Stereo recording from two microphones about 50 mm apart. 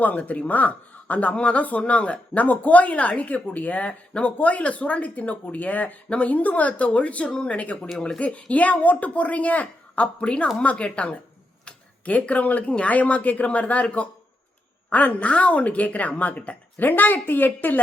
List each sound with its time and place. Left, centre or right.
0.0 s a woman's voice: left